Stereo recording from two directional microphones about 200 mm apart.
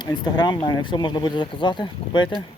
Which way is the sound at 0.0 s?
20° left (ahead or behind).